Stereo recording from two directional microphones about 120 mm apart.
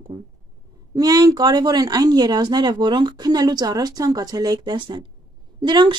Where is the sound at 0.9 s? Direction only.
30° right (ahead or behind).